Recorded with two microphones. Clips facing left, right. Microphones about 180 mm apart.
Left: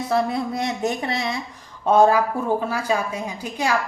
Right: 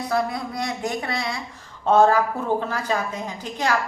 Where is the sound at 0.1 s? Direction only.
25° left (ahead or behind).